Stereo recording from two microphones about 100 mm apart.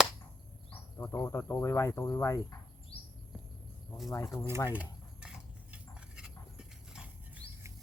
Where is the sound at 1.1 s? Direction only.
25° left (ahead or behind).